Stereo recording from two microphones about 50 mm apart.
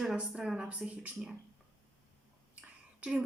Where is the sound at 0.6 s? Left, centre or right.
Right.